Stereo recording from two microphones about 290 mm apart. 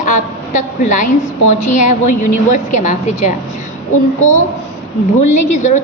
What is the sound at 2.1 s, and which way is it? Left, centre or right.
Speech, left.